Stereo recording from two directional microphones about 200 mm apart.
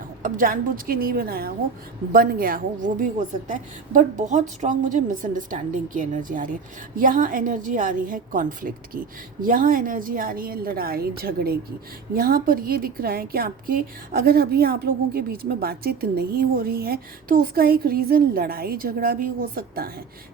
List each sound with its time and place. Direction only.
0.2 s a woman's voice: 40° right (ahead or behind)